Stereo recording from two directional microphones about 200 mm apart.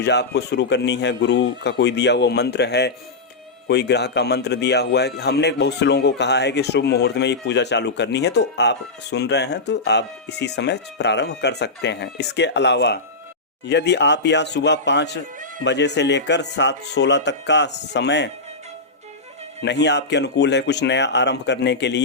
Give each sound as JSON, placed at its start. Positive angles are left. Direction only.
{"t": 0.0, "sound": "speech", "side_deg": 55}
{"t": 19.6, "sound": "speech", "side_deg": 60}